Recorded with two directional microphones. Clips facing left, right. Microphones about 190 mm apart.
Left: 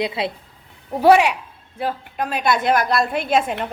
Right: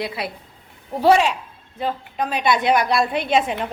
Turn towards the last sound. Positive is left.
turn(degrees=0)  # may be behind; listen again after turning